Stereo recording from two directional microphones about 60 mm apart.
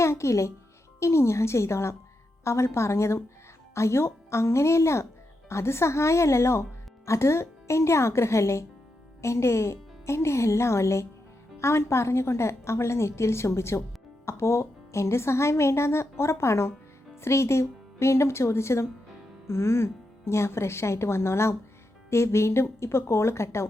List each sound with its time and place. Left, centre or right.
0.0 s speech: left